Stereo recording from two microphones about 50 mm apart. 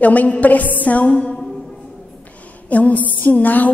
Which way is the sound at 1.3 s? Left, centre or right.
Centre.